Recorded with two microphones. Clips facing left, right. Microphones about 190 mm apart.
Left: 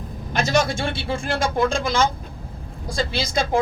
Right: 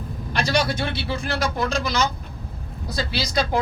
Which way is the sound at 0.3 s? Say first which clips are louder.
Left 2 dB; 45° left (ahead or behind).